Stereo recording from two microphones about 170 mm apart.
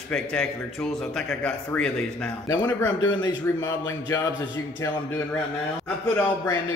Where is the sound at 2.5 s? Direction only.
20° left (ahead or behind).